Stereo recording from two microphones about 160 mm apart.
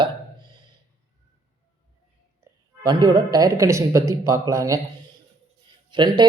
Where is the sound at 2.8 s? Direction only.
25° right (ahead or behind).